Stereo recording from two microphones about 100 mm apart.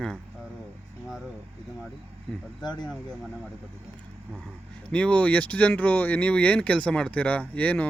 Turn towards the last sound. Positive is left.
turn(degrees=15)  # may be behind; listen again after turning